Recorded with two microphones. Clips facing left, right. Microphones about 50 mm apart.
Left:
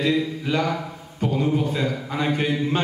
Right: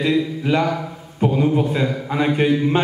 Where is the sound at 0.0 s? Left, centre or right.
Centre.